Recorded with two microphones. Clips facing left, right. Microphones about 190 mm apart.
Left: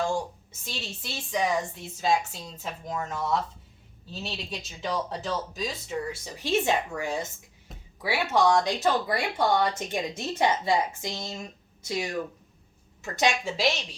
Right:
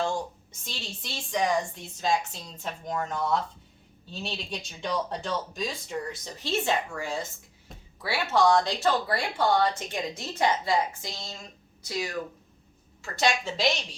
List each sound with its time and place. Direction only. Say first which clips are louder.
0.6 s speech: left 2 dB; 5° left (ahead or behind)
7.7 s a sound: even; centre (ahead or behind)
8.0 s speech: even; 15° left (ahead or behind)